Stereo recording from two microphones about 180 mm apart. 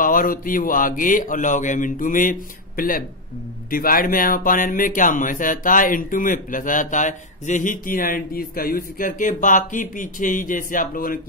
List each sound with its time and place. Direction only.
0.0 s speech: 50° left (ahead or behind)